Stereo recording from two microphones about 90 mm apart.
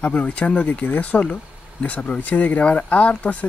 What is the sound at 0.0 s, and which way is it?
Speech, 15° left (ahead or behind).